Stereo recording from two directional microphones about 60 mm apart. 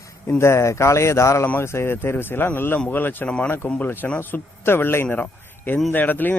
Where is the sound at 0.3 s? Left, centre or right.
Left.